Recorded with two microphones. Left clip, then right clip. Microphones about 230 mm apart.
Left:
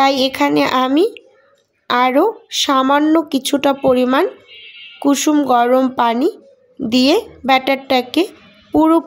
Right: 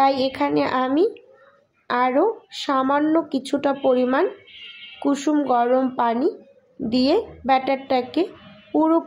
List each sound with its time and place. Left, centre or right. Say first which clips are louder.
0.0 s speech: left 5 dB; left